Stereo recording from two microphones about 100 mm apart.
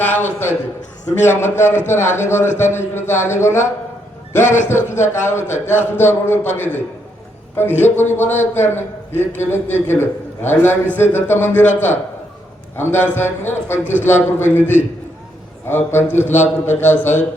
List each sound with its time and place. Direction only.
0.0 s a man's voice: 20° left (ahead or behind)